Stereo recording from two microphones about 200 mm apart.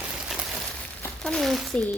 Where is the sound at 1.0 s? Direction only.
5° left (ahead or behind).